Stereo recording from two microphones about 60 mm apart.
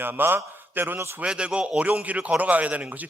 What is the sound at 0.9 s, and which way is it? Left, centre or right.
Speech, right.